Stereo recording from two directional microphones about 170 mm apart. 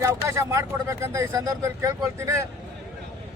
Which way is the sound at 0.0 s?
15° right (ahead or behind).